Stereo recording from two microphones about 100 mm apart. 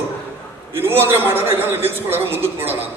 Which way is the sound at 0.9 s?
20° right (ahead or behind).